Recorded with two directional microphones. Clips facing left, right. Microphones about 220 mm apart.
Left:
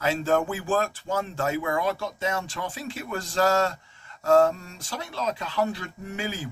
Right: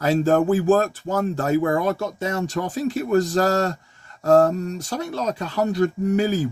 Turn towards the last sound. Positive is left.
turn(degrees=-40)  # may be behind; listen again after turning